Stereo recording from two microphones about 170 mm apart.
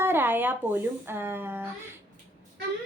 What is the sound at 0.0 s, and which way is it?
Speech, 15° right (ahead or behind).